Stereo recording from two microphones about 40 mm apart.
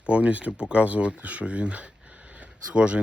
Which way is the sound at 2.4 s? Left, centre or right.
Right.